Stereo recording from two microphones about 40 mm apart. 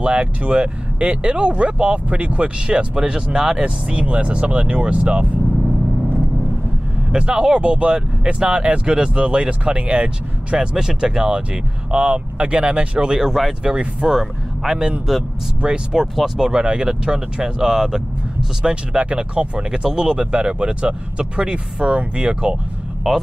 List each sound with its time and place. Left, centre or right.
0.0 s speech: right
3.0 s speech: centre
3.6 s speech: right
7.1 s speech: right
13.3 s speech: centre
15.6 s speech: right
19.7 s speech: centre